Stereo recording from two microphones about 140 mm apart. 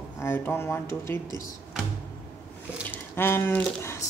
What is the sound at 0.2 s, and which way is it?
Speech, 15° left (ahead or behind).